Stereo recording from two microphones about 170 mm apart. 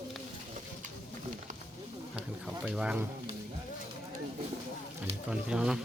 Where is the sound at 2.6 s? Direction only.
5° right (ahead or behind).